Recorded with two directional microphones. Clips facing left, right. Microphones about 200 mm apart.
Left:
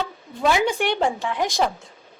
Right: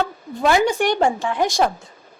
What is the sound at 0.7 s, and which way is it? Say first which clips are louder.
Speech: right 4 dB; 45° right (ahead or behind).